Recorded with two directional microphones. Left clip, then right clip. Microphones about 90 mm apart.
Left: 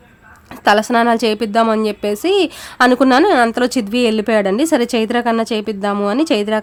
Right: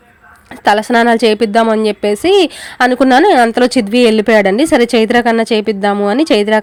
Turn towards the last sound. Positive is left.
turn(degrees=-35)  # may be behind; listen again after turning